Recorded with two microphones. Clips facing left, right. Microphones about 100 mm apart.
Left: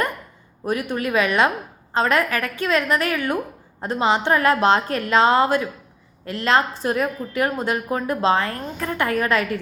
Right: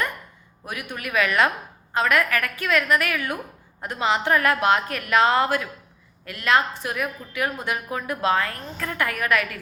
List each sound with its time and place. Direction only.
0.6 s a woman's voice: 35° left (ahead or behind)